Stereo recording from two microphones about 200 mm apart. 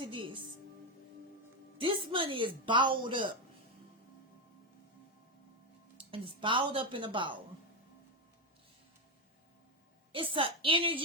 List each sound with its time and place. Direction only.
0.1 s a woman's voice: 25° right (ahead or behind)
1.8 s speech: 25° right (ahead or behind)
6.1 s speech: 25° right (ahead or behind)
10.1 s speech: 25° right (ahead or behind)